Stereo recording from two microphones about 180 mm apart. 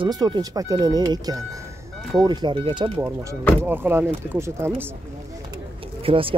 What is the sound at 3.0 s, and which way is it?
Speech, 15° right (ahead or behind).